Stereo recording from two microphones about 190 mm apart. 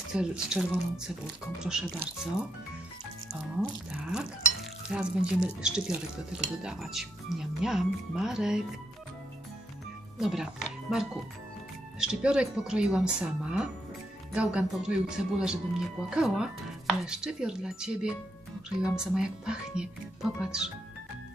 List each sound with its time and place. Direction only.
0.1 s chopping: 5° right (ahead or behind)
3.9 s chopping: 5° right (ahead or behind)
10.1 s speech: centre (ahead or behind)
12.0 s chopping: 5° right (ahead or behind)